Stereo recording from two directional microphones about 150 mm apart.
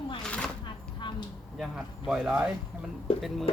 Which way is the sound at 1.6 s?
Centre (ahead or behind).